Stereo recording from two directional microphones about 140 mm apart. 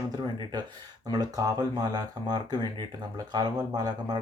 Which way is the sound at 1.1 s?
25° right (ahead or behind).